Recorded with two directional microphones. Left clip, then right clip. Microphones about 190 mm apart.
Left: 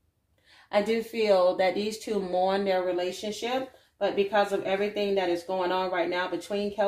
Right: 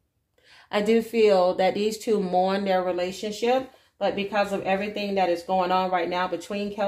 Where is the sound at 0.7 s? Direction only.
45° right (ahead or behind).